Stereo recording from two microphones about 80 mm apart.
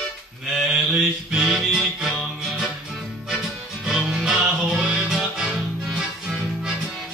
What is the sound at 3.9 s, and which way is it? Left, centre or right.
Music, centre.